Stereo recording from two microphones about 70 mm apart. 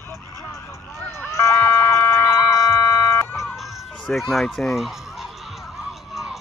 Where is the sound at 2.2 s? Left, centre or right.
Left.